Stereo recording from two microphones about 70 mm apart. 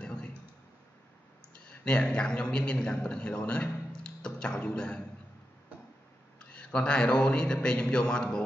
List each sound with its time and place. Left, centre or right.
0.0 s clicking: centre
1.7 s speech: centre
6.4 s a man's voice: centre